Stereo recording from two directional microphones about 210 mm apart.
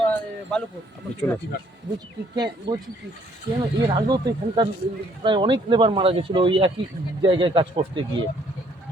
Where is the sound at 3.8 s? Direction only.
20° right (ahead or behind).